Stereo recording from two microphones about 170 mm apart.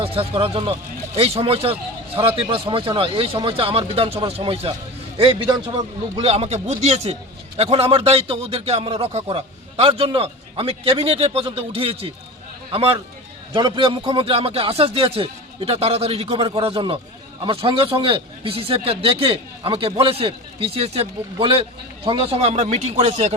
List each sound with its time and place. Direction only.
0.0 s a man's voice: 35° right (ahead or behind)